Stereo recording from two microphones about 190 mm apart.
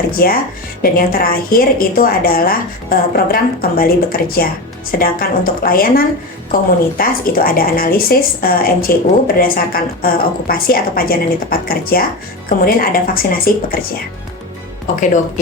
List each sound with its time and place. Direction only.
0.1 s speech: 50° left (ahead or behind)